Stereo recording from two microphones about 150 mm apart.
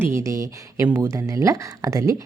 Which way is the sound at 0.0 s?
20° right (ahead or behind).